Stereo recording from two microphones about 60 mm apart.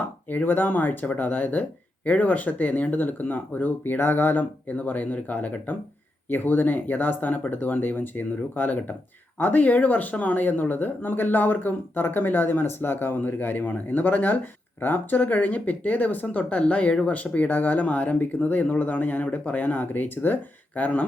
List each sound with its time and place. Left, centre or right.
0.3 s speech: left